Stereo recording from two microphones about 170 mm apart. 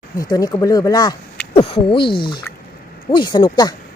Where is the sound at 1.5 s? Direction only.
30° left (ahead or behind).